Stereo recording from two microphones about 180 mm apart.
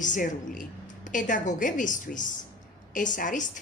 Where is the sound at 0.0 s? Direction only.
45° left (ahead or behind).